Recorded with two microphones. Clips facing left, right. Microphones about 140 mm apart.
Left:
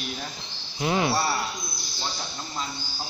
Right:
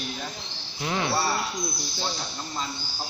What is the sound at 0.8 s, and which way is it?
Speech, 15° left (ahead or behind).